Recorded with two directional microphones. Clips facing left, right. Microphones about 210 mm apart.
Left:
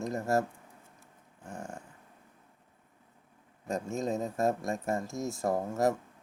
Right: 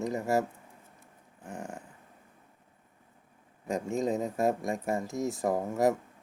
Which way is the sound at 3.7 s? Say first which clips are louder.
Right 3 dB; 15° right (ahead or behind).